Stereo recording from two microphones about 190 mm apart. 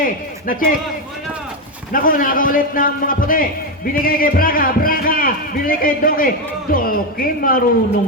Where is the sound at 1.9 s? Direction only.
45° left (ahead or behind).